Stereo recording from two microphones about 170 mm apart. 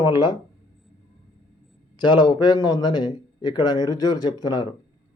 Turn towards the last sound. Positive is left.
turn(degrees=25)  # may be behind; listen again after turning